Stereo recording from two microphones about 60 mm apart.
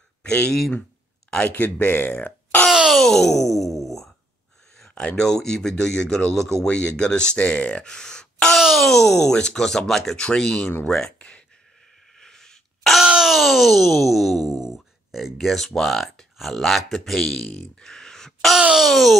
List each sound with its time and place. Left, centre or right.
0.2 s speech: centre
1.4 s speech: left
2.9 s a sound: centre
5.1 s speech: centre
6.7 s speech: centre
8.5 s speech: centre
12.2 s a sound: centre
13.0 s a sound: centre
14.7 s speech: centre
17.5 s speech: left
17.8 s a sound: centre
18.8 s speech: centre